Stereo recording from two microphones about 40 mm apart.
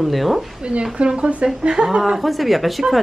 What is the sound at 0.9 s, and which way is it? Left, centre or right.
Speech, right.